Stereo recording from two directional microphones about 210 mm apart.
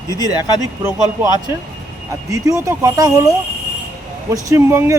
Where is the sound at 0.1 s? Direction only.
15° left (ahead or behind).